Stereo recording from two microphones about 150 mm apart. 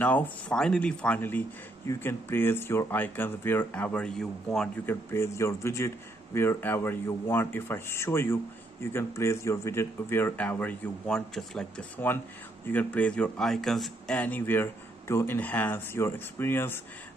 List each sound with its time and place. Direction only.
0.0 s a man's voice: 10° left (ahead or behind)
5.1 s a man's voice: 20° left (ahead or behind)